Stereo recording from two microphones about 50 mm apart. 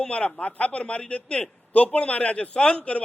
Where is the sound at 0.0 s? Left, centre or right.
Centre.